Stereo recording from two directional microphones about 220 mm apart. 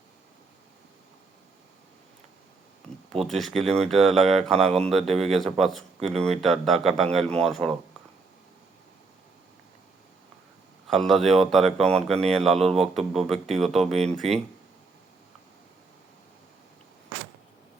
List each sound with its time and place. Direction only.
3.1 s speech: centre (ahead or behind)
10.8 s speech: centre (ahead or behind)
13.9 s speech: 30° right (ahead or behind)